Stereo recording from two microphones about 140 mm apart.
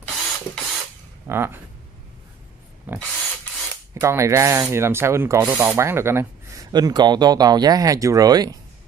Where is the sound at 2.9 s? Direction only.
10° right (ahead or behind); by 8.6 s 25° right (ahead or behind).